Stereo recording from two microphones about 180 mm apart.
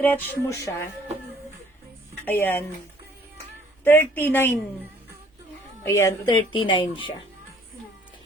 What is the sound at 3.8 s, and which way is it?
Speech, 10° left (ahead or behind).